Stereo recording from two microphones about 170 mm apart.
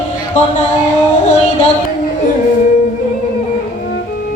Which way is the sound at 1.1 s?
45° left (ahead or behind).